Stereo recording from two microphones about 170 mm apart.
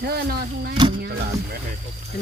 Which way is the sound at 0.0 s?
65° right (ahead or behind).